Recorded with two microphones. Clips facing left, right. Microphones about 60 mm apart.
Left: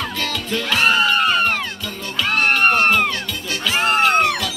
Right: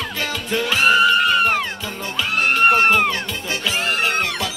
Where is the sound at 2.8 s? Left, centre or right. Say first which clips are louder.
Right 1 dB; centre.